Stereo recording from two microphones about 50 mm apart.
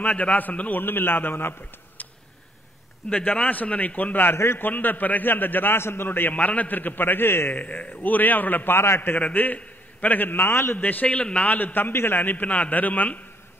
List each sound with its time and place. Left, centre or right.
0.0 s a man's voice: left
3.0 s a man's voice: centre
3.4 s a man's voice: left
6.3 s a man's voice: left
7.5 s a man's voice: left
8.7 s a man's voice: left
9.2 s a man's voice: left
10.8 s a man's voice: left
11.1 s a man's voice: left
11.5 s a man's voice: left
11.9 s a man's voice: left